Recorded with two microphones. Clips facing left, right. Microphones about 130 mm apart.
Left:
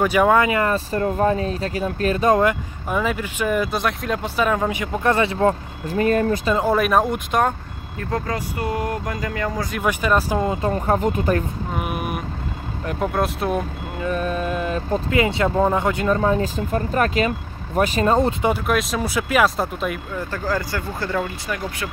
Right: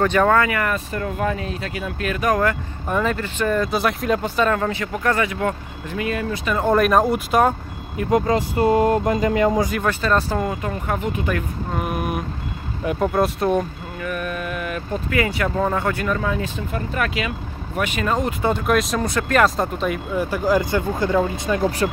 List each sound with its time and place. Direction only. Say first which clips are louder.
0.0 s speech: left 1 dB; 10° left (ahead or behind)
2.9 s speech: right 1 dB; 5° left (ahead or behind)
3.7 s speech: right 3 dB; centre (ahead or behind)
4.5 s speech: even; 15° left (ahead or behind); by 6.5 s 40° left (ahead or behind)
6.6 s speech: right 4 dB; centre (ahead or behind)
8.0 s speech: right 7 dB; 20° right (ahead or behind)
9.8 s speech: even; 15° left (ahead or behind)
10.4 s speech: left 3 dB; 30° left (ahead or behind)
11.7 s vehicle: right 2 dB; 5° left (ahead or behind)
12.8 s speech: right 3 dB; centre (ahead or behind)
14.0 s speech: left 4 dB; 30° left (ahead or behind)
16.2 s speech: left 4 dB; 35° left (ahead or behind)
18.7 s speech: right 2 dB; centre (ahead or behind)
20.2 s speech: right 7 dB; 15° right (ahead or behind)